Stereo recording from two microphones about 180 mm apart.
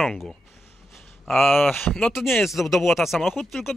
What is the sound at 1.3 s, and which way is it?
A man's voice, centre (ahead or behind).